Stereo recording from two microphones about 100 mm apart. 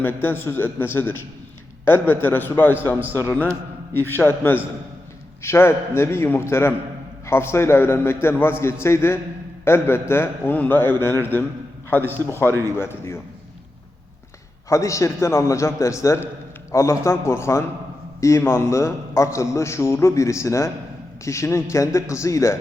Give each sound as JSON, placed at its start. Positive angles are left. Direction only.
{"t": 0.0, "sound": "a man's voice", "side_deg": 20}
{"t": 12.5, "sound": "speech", "side_deg": -25}
{"t": 12.7, "sound": "a man's voice", "side_deg": 25}
{"t": 14.7, "sound": "a man's voice", "side_deg": 30}